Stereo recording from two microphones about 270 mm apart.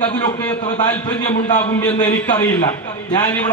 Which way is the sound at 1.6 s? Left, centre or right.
Centre.